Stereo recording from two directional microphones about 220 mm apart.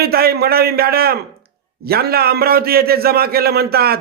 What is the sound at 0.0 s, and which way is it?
A man's voice, 45° right (ahead or behind).